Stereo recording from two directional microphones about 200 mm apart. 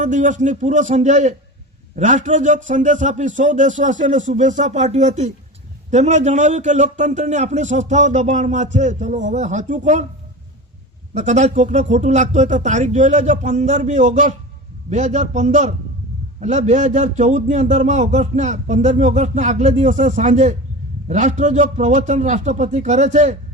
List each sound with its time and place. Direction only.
0.0 s a man's voice: 40° right (ahead or behind)
11.1 s a man's voice: 35° right (ahead or behind)